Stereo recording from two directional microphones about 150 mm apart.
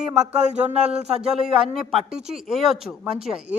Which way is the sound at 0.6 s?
45° right (ahead or behind).